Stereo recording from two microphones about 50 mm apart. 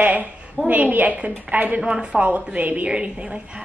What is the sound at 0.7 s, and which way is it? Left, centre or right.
A woman's voice, right.